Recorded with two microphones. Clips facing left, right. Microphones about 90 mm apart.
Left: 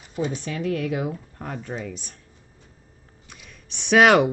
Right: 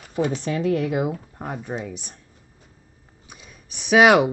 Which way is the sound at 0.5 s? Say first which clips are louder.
Right 4 dB; 30° right (ahead or behind).